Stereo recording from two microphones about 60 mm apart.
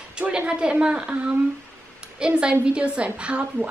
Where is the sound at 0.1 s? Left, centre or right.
Centre.